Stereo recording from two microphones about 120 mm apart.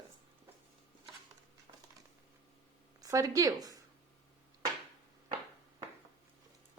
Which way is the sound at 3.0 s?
30° right (ahead or behind).